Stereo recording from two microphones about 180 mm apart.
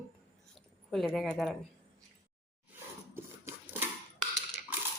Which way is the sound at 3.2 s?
15° right (ahead or behind).